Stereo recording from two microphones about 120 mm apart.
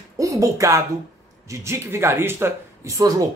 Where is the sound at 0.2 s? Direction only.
25° right (ahead or behind).